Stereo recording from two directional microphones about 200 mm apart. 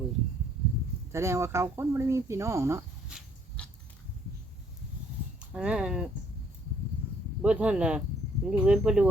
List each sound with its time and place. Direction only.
1.1 s speech: 15° right (ahead or behind)
3.1 s a sound: centre (ahead or behind)
5.4 s speech: 5° right (ahead or behind)
7.4 s speech: 5° right (ahead or behind)